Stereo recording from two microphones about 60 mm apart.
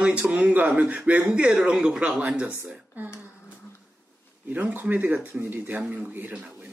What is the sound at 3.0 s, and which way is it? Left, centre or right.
Speech, right.